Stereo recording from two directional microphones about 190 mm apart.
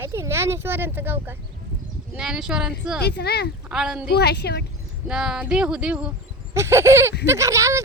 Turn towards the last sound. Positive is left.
turn(degrees=-15)  # may be behind; listen again after turning